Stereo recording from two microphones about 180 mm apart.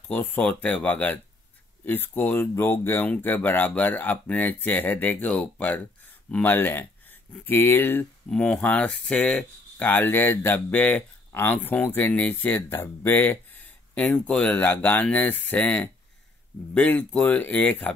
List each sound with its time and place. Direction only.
0.1 s speech: 10° left (ahead or behind)